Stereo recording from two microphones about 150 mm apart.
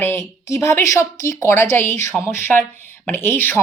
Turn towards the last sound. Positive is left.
turn(degrees=15)  # may be behind; listen again after turning